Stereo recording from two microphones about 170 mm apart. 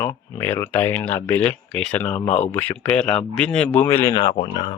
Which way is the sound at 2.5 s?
10° left (ahead or behind).